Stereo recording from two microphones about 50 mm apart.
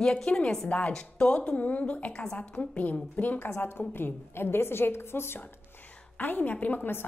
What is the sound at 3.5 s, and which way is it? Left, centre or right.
A woman's voice, left.